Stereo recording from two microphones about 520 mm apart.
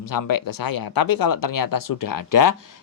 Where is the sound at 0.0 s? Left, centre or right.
Left.